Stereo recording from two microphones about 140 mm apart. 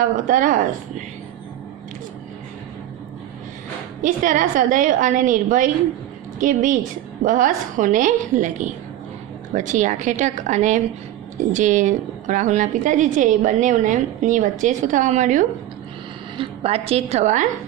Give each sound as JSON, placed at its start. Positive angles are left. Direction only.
{"t": 0.3, "sound": "a woman's voice", "side_deg": -70}
{"t": 4.0, "sound": "a woman's voice", "side_deg": -70}
{"t": 16.3, "sound": "a woman's voice", "side_deg": -45}